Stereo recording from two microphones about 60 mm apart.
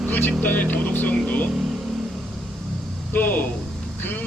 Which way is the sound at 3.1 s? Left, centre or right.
Left.